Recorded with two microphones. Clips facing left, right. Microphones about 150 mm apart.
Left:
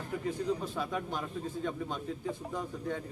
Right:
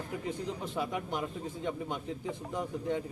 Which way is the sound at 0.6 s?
15° right (ahead or behind).